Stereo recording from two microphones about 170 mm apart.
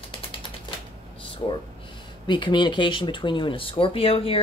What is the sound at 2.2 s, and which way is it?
Speech, 25° left (ahead or behind).